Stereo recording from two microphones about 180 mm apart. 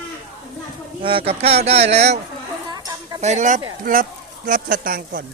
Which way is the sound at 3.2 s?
40° right (ahead or behind).